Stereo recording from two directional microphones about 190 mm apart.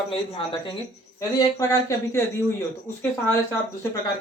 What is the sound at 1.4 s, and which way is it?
Speech, 15° left (ahead or behind).